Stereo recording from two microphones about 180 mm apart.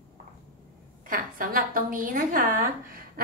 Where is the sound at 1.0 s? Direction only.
50° right (ahead or behind).